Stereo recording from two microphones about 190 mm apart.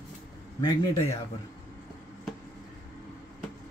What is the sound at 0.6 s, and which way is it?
Speech, 15° left (ahead or behind).